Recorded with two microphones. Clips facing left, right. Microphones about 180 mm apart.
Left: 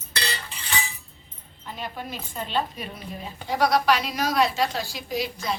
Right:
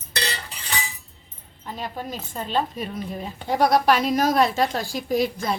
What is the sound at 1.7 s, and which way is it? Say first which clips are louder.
Speech: right 3 dB; 40° right (ahead or behind).